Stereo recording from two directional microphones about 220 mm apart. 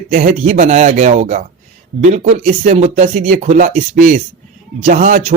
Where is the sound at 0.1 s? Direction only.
35° right (ahead or behind).